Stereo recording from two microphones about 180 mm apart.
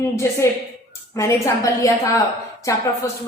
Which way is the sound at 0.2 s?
15° left (ahead or behind).